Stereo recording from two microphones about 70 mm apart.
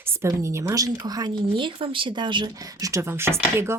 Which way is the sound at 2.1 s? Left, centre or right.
Right.